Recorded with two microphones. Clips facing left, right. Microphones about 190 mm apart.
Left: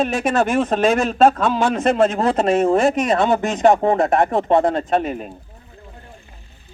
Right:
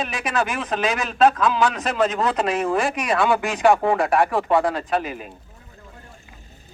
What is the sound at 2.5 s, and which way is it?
Speech, 45° left (ahead or behind).